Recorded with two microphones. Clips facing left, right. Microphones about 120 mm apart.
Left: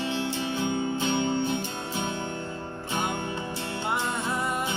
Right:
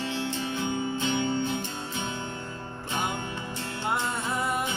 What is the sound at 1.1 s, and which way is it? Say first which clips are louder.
Music: left 1 dB; 25° left (ahead or behind).